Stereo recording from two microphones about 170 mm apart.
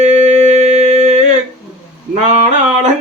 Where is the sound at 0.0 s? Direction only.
45° right (ahead or behind).